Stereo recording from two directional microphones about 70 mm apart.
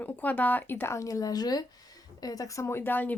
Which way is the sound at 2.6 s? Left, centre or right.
Left.